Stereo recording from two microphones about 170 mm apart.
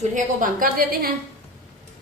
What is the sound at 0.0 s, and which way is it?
A woman's voice, 50° right (ahead or behind).